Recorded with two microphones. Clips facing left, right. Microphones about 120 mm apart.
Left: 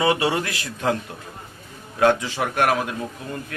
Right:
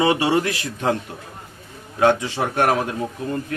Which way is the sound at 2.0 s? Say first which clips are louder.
Right 1 dB; 20° right (ahead or behind).